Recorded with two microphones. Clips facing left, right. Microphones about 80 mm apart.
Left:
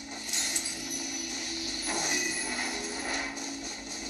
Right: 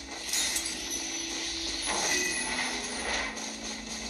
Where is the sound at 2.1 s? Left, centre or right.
Centre.